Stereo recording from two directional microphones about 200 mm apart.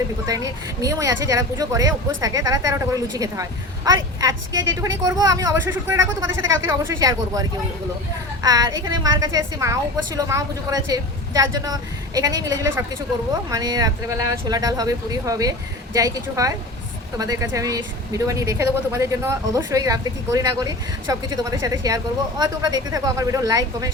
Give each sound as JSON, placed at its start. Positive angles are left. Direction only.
{"t": 0.3, "sound": "a woman's voice", "side_deg": -15}